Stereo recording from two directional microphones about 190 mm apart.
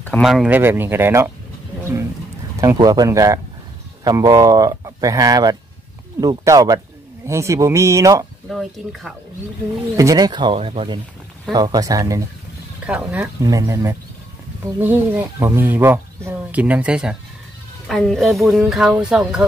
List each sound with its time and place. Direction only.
0.2 s speech: 5° right (ahead or behind)
2.6 s speech: 20° right (ahead or behind)
8.5 s speech: centre (ahead or behind)
9.9 s speech: 20° right (ahead or behind)
12.8 s speech: 5° right (ahead or behind)
13.4 s speech: 15° right (ahead or behind)